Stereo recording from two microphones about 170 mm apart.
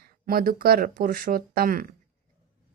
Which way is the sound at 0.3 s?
60° right (ahead or behind).